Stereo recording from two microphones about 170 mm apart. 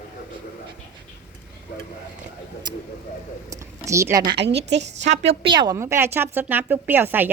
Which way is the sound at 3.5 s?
15° right (ahead or behind).